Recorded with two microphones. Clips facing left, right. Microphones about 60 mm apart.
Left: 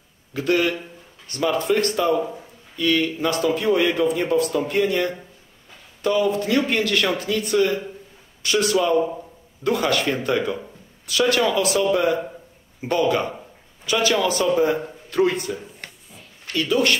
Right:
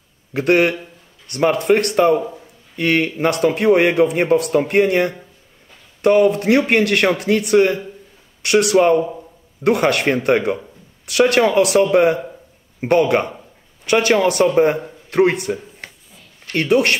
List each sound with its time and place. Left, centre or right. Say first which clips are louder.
0.3 s a man's voice: right 5 dB; right
15.4 s a sound: right 5 dB; right
16.5 s a man's voice: right 5 dB; right